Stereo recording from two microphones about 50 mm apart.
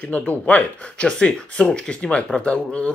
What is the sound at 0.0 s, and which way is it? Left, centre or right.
Speech, left.